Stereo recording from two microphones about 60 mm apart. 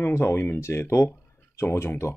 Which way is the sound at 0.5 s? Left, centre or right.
Left.